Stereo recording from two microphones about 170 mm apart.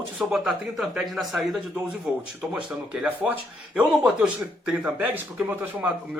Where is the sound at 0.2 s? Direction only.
5° right (ahead or behind).